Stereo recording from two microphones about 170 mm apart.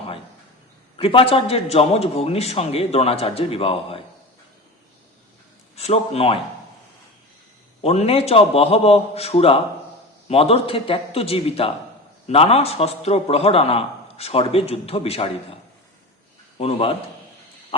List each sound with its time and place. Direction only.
0.9 s a man's voice: 35° left (ahead or behind)
5.7 s a man's voice: 35° left (ahead or behind)
7.8 s a man's voice: 35° left (ahead or behind)
16.6 s a man's voice: 35° left (ahead or behind)